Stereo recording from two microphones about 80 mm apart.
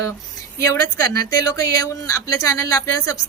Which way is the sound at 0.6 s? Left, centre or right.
Left.